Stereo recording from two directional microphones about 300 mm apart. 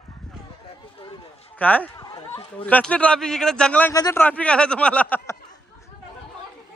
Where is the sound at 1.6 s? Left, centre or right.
Centre.